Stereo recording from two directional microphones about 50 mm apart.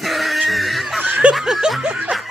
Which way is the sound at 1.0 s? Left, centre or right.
Right.